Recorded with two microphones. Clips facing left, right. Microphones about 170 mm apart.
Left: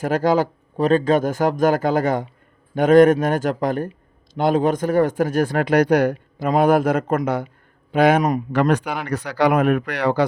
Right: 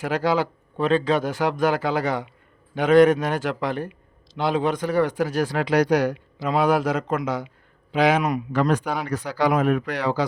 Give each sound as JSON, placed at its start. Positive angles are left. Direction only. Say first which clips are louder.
{"t": 0.0, "sound": "speech", "louder": "left 4 dB", "side_deg": 45}
{"t": 8.5, "sound": "speech", "louder": "left 1 dB", "side_deg": 70}